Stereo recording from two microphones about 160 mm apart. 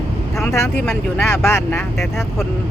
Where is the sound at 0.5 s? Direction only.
15° left (ahead or behind).